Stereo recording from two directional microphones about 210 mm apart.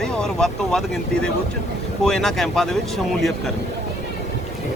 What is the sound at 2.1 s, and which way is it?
Speech, centre (ahead or behind).